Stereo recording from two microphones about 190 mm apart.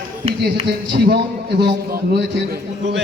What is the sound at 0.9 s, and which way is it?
A man's voice, 60° right (ahead or behind).